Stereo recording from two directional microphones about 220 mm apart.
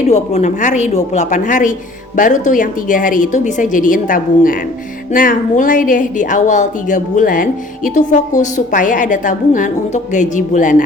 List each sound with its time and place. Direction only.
0.1 s a woman's voice: 30° left (ahead or behind)